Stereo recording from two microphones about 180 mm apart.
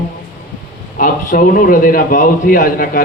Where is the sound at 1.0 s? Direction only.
50° left (ahead or behind).